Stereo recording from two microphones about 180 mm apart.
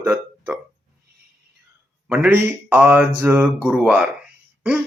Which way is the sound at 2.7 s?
10° right (ahead or behind).